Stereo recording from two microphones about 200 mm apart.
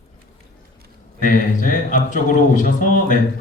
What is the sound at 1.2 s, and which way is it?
A man's voice, 40° left (ahead or behind).